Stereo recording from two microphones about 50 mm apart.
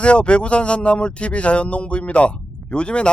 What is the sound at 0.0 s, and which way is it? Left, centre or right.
Speech, left.